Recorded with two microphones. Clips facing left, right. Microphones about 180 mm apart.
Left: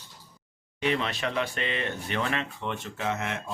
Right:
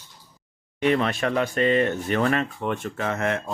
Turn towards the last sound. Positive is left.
turn(degrees=-55)  # may be behind; listen again after turning